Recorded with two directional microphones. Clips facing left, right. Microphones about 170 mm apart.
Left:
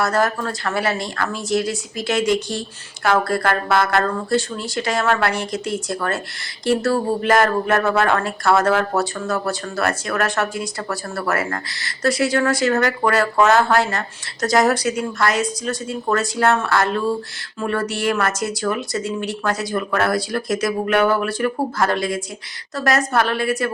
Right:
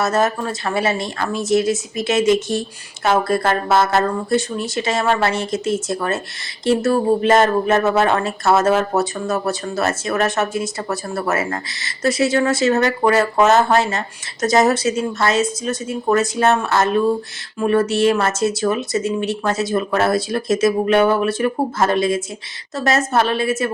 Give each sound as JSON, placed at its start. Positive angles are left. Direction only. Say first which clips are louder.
{"t": 0.0, "sound": "speech", "louder": "right 1 dB", "side_deg": -20}